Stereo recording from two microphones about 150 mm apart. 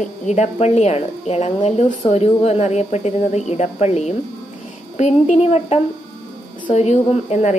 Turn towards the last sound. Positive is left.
turn(degrees=50)  # may be behind; listen again after turning